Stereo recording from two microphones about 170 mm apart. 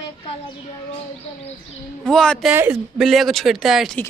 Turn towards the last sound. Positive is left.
turn(degrees=0)  # may be behind; listen again after turning